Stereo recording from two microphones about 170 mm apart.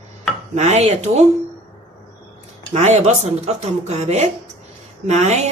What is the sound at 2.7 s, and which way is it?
A woman's voice, 40° right (ahead or behind).